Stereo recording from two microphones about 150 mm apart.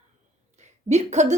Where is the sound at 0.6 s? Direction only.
50° right (ahead or behind).